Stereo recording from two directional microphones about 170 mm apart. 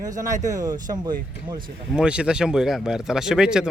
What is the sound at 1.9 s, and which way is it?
Speech, 5° right (ahead or behind).